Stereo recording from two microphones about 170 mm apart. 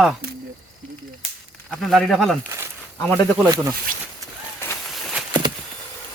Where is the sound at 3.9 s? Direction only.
55° right (ahead or behind).